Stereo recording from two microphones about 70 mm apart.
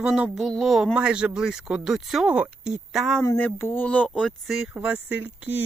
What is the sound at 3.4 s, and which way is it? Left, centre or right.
Speech, left.